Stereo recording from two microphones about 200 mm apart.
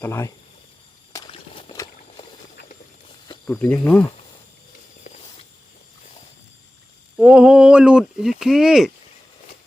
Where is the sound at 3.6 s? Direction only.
5° left (ahead or behind).